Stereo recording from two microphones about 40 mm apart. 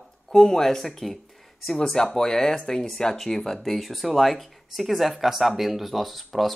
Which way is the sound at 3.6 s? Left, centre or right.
Centre.